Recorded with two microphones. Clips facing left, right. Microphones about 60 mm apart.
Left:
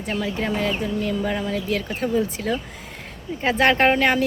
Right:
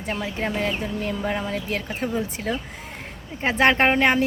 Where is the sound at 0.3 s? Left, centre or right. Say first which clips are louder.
Even; right.